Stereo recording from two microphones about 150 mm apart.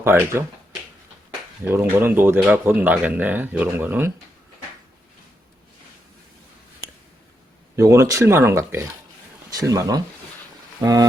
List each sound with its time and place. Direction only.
0.0 s speech: 15° right (ahead or behind)
1.6 s speech: 15° right (ahead or behind)
7.8 s speech: 20° right (ahead or behind)